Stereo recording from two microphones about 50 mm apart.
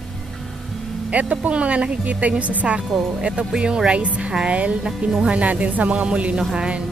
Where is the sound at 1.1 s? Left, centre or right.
Right.